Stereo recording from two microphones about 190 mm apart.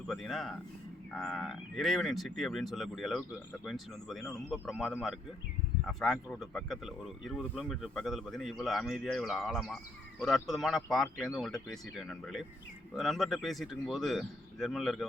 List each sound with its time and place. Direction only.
0.1 s speech: centre (ahead or behind)